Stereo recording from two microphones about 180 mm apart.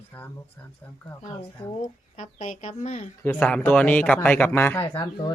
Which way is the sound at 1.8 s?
45° left (ahead or behind).